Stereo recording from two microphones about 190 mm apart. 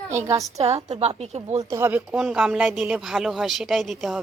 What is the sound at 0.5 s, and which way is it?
Speech, 35° right (ahead or behind).